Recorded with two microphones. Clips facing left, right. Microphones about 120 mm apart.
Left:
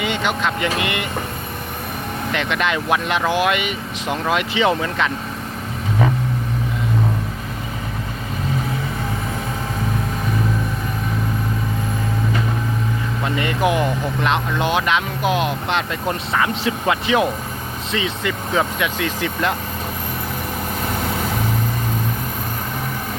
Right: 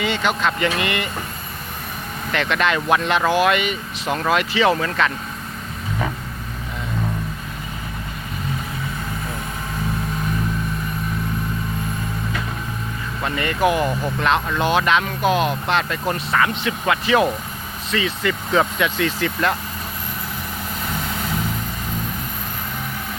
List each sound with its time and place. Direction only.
0.0 s speech: 15° left (ahead or behind)
2.3 s speech: 15° left (ahead or behind)
13.2 s speech: 15° left (ahead or behind)